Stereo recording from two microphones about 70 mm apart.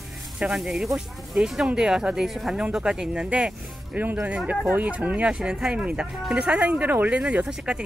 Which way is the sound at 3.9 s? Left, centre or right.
Right.